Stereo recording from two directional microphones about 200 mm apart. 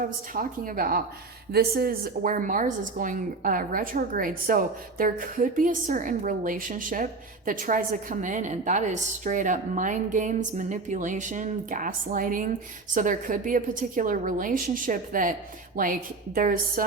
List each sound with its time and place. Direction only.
0.0 s a woman's voice: 45° right (ahead or behind)